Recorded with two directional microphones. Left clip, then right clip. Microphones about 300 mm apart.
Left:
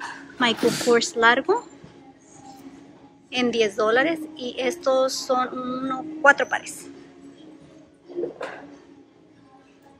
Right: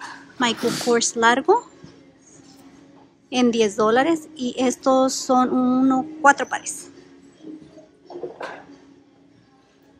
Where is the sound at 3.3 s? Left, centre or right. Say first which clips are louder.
Right 3 dB; centre.